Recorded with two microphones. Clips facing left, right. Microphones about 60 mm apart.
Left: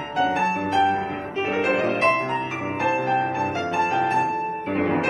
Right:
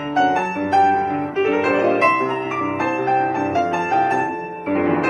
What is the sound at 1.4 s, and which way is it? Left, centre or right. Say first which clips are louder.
Music: right 4 dB; right.